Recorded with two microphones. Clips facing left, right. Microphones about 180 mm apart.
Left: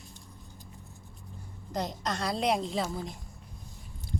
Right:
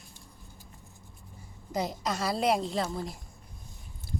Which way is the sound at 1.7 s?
5° right (ahead or behind).